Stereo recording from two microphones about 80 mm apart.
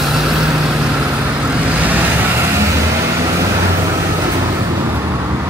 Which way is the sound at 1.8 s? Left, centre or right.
Right.